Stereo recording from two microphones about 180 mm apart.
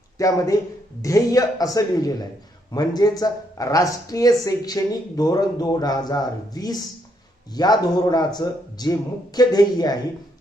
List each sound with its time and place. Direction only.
0.2 s speech: 20° left (ahead or behind)